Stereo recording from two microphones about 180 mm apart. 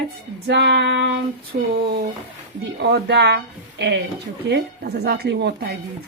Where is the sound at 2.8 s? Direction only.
70° right (ahead or behind).